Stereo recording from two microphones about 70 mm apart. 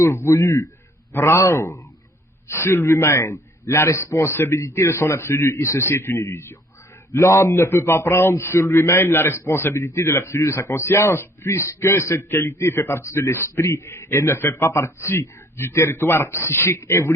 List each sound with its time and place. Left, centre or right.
0.0 s a man's voice: left